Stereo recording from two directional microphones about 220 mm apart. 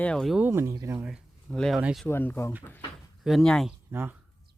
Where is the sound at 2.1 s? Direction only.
10° left (ahead or behind).